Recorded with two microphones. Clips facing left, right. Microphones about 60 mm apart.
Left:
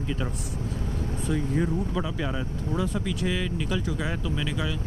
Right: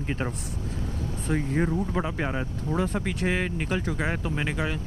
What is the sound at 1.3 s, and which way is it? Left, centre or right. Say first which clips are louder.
Speech: right 1 dB; right.